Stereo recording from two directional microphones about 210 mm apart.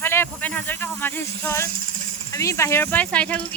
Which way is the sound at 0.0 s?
10° left (ahead or behind).